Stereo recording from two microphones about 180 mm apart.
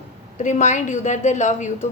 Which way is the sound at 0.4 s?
45° left (ahead or behind).